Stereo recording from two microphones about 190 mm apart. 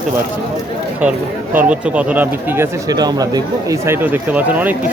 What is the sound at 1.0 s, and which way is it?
Speech, 10° right (ahead or behind).